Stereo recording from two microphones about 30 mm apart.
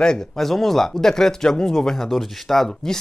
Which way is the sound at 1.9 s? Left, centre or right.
Centre.